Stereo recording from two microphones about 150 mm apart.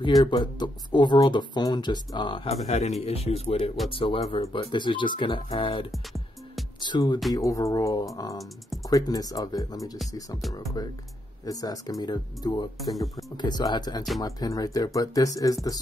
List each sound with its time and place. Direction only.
0.0 s speech: 25° left (ahead or behind)
5.9 s music: centre (ahead or behind)
6.8 s speech: 30° left (ahead or behind)
11.4 s speech: 25° left (ahead or behind)